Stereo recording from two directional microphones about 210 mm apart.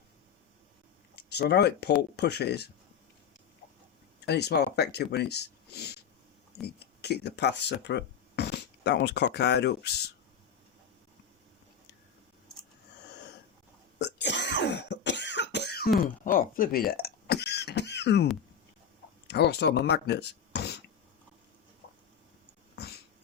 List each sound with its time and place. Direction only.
1.1 s speech: 50° left (ahead or behind)
4.3 s speech: 50° left (ahead or behind)
14.0 s throat clearing: 55° left (ahead or behind)
16.0 s a sound: 40° left (ahead or behind)
19.3 s speech: 55° left (ahead or behind)
22.7 s a sound: 50° left (ahead or behind)